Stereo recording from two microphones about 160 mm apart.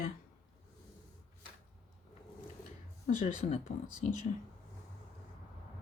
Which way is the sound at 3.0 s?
45° left (ahead or behind).